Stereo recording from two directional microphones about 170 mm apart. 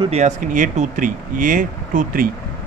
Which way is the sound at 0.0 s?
40° right (ahead or behind).